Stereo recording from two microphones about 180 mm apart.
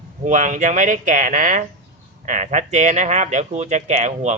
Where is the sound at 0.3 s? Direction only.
45° right (ahead or behind).